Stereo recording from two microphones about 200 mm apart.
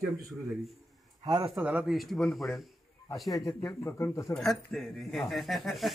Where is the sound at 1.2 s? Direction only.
20° right (ahead or behind).